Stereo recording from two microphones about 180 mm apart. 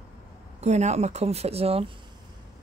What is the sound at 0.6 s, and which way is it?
Speech, 40° right (ahead or behind).